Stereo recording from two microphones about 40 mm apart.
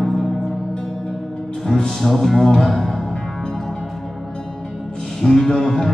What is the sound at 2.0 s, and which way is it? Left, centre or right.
Music, centre.